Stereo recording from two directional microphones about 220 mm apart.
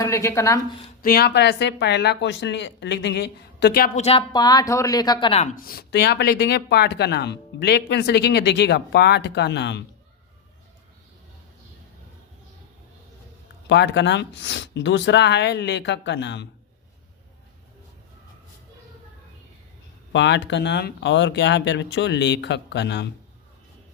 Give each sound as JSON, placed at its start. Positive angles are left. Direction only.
{"t": 0.0, "sound": "a woman's voice", "side_deg": 15}
{"t": 1.0, "sound": "speech", "side_deg": 45}
{"t": 4.0, "sound": "a woman's voice", "side_deg": 20}
{"t": 5.5, "sound": "speech", "side_deg": 40}
{"t": 13.7, "sound": "speech", "side_deg": 55}
{"t": 20.1, "sound": "speech", "side_deg": 55}